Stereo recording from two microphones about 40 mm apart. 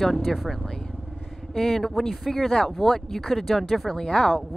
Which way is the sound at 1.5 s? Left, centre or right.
Centre.